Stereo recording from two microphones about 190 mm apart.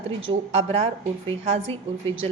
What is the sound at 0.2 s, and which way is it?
Speech, 30° right (ahead or behind).